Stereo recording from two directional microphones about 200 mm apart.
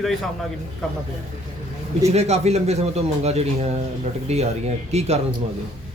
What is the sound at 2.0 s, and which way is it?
A man's voice, 30° right (ahead or behind).